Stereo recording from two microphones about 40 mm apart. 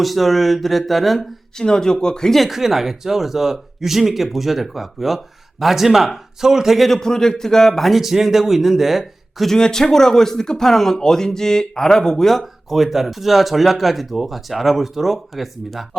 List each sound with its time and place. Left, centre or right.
0.0 s speech: centre
1.5 s speech: centre
2.3 s speech: centre
6.7 s speech: centre
7.0 s speech: centre
9.5 s speech: centre